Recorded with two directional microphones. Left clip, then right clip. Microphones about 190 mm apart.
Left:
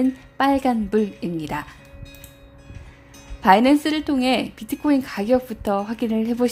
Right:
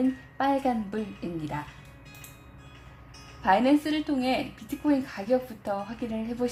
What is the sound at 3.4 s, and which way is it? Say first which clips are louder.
A woman's voice: left 7 dB; 35° left (ahead or behind).